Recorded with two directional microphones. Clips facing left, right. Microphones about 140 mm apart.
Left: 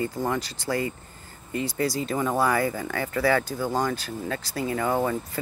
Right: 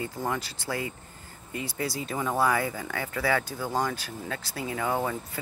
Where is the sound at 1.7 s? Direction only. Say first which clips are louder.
Left 5 dB; 90° left.